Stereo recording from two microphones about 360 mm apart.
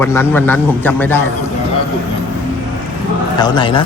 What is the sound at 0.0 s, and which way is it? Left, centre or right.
A man's voice, centre.